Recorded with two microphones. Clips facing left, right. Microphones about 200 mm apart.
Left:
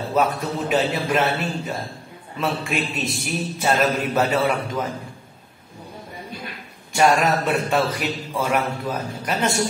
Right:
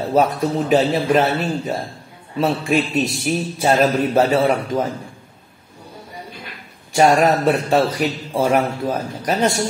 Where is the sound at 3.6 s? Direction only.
35° right (ahead or behind).